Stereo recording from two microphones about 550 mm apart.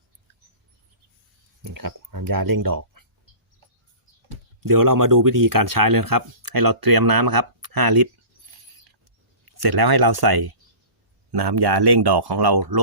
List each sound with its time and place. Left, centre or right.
1.6 s speech: right
4.6 s speech: right
9.5 s speech: right